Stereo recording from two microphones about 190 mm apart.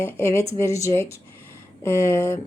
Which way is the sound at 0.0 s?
15° left (ahead or behind).